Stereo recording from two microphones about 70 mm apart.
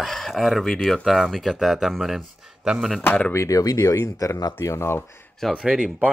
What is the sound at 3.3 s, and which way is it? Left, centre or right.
Speech, left.